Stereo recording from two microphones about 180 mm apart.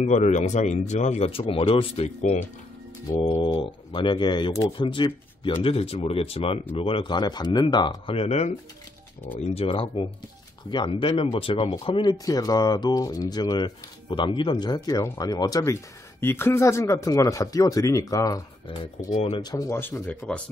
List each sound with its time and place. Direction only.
0.0 s speech: 40° left (ahead or behind)
3.4 s speech: 30° left (ahead or behind)
19.1 s speech: 35° left (ahead or behind)
19.4 s speech: 15° left (ahead or behind)